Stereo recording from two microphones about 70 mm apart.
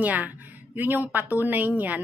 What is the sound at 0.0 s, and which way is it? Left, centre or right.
A woman's voice, right.